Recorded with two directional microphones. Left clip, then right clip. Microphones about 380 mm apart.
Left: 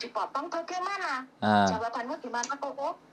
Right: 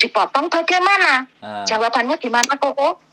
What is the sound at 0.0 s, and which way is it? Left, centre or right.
Speech, right.